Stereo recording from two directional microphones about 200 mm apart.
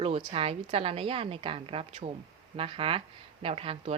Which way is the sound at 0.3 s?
30° right (ahead or behind).